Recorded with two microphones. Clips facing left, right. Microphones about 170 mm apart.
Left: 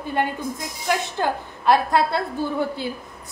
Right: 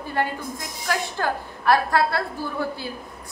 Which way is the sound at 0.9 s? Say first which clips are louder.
Left 2 dB; 20° left (ahead or behind).